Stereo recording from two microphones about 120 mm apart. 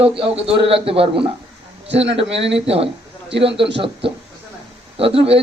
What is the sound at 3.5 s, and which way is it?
A man's voice, 45° right (ahead or behind).